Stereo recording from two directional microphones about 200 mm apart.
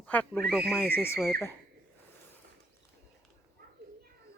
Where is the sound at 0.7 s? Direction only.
10° left (ahead or behind).